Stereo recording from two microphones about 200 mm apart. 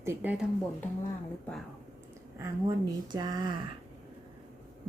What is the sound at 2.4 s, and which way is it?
Speech, 15° right (ahead or behind).